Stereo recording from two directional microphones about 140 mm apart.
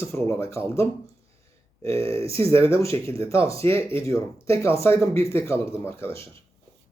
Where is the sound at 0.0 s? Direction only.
20° left (ahead or behind).